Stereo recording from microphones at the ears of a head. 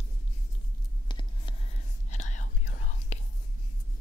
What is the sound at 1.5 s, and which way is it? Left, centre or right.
Whispering, left.